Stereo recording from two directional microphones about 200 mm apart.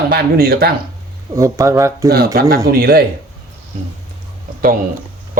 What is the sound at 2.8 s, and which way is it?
Speech, 50° right (ahead or behind).